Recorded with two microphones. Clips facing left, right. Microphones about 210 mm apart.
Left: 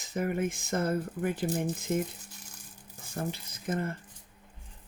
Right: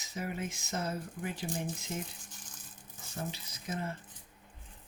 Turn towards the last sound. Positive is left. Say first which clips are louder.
# left 6 dB
turn(degrees=55)  # may be behind; listen again after turning